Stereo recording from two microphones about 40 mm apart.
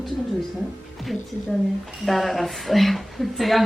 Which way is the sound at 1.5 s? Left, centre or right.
Centre.